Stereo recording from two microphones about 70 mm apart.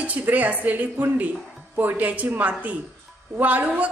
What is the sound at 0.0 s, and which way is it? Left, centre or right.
A woman's voice, right.